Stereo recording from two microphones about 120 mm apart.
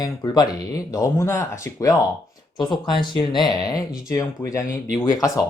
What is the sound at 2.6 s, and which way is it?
Speech, 40° left (ahead or behind).